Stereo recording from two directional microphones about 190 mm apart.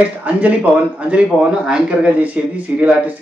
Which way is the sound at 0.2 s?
5° right (ahead or behind).